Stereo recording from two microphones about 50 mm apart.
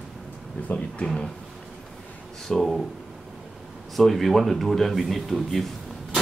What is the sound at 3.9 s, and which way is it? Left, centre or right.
Speech, centre.